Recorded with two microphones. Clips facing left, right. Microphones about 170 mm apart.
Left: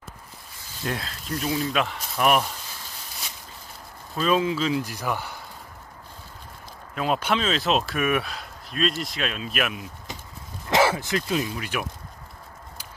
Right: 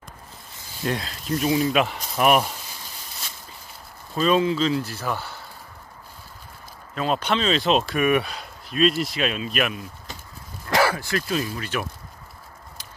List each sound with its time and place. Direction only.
0.8 s speech: centre (ahead or behind)
4.2 s speech: 5° left (ahead or behind)
7.0 s speech: 5° left (ahead or behind)
10.7 s speech: 20° left (ahead or behind)